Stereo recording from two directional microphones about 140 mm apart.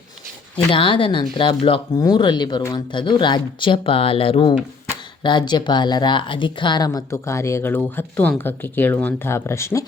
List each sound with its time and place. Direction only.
0.5 s speech: 40° left (ahead or behind); by 9.8 s 20° left (ahead or behind)